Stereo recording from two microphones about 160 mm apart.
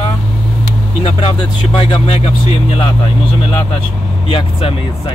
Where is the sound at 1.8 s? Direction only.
35° left (ahead or behind).